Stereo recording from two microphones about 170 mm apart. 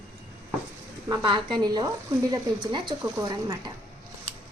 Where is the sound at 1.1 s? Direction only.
30° right (ahead or behind).